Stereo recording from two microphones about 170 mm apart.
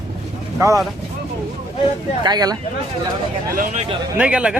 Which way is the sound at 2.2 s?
25° right (ahead or behind).